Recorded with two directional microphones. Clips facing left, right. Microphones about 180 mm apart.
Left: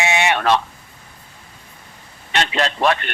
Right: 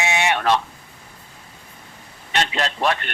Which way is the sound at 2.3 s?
90° left.